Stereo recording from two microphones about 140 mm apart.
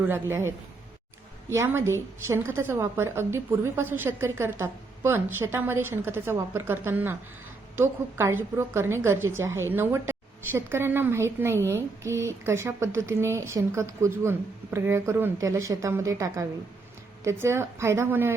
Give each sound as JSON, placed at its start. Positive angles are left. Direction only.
{"t": 0.1, "sound": "a woman's voice", "side_deg": -15}